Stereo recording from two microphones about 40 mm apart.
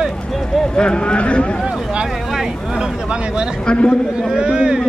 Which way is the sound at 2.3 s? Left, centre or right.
Centre.